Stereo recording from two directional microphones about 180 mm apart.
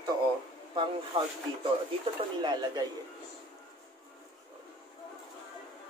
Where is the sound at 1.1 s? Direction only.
30° right (ahead or behind).